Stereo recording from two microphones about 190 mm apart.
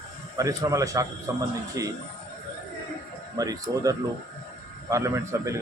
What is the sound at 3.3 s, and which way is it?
Speech, 20° right (ahead or behind).